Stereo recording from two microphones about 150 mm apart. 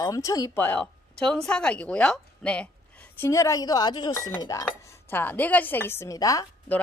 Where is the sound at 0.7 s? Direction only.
5° left (ahead or behind).